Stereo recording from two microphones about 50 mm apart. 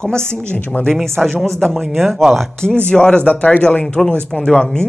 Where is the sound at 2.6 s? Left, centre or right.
Centre.